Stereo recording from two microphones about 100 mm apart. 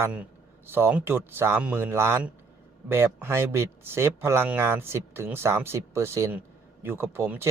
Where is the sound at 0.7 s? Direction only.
20° right (ahead or behind).